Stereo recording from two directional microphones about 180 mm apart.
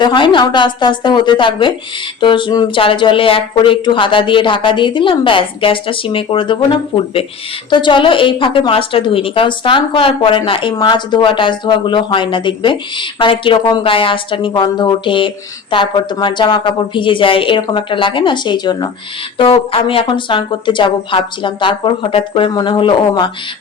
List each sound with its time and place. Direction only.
0.0 s a woman's voice: 25° left (ahead or behind)